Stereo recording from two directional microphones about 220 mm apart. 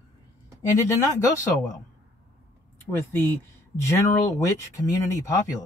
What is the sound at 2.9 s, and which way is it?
Speech, 10° left (ahead or behind).